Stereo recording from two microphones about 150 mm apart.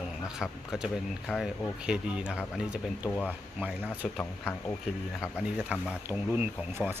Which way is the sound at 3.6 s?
10° right (ahead or behind).